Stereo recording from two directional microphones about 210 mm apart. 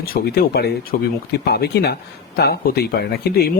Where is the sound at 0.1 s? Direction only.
50° left (ahead or behind).